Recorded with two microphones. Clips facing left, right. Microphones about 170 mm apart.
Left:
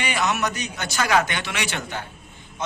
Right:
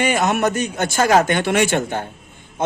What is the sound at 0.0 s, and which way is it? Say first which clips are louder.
A man's voice: right 7 dB; 50° right (ahead or behind).